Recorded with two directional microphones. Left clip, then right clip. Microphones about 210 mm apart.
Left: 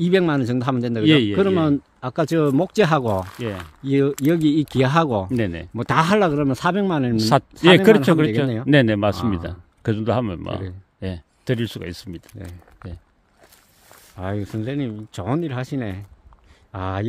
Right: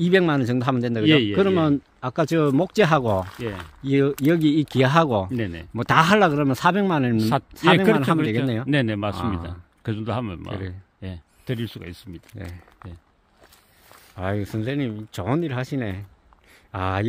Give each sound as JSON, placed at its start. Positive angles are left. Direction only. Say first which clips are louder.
{"t": 0.0, "sound": "speech", "louder": "even", "side_deg": 0}
{"t": 1.0, "sound": "speech", "louder": "left 2 dB", "side_deg": 40}
{"t": 1.3, "sound": "speech", "louder": "left 1 dB", "side_deg": 5}
{"t": 5.3, "sound": "speech", "louder": "left 5 dB", "side_deg": 50}
{"t": 5.8, "sound": "speech", "louder": "right 1 dB", "side_deg": -5}
{"t": 7.2, "sound": "speech", "louder": "left 5 dB", "side_deg": 45}
{"t": 11.0, "sound": "speech", "louder": "left 8 dB", "side_deg": 45}
{"t": 12.8, "sound": "speech", "louder": "left 4 dB", "side_deg": 15}
{"t": 14.1, "sound": "speech", "louder": "right 1 dB", "side_deg": -5}